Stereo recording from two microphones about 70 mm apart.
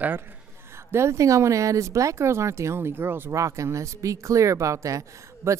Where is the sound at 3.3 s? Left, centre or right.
Right.